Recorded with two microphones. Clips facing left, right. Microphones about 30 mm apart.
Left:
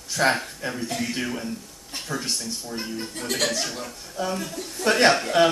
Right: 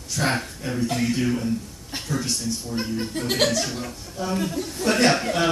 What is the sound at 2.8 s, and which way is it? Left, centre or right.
Speech, centre.